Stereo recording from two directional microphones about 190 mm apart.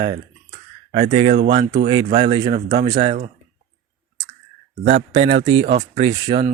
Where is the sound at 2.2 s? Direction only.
25° right (ahead or behind).